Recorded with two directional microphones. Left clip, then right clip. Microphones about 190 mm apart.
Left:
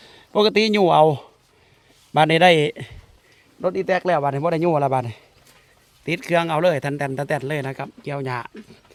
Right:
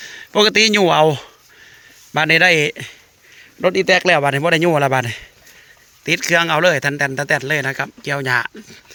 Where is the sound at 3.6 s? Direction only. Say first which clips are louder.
Right 7 dB; 25° right (ahead or behind).